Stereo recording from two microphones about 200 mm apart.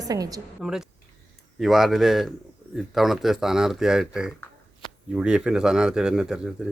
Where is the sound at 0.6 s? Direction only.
Centre (ahead or behind).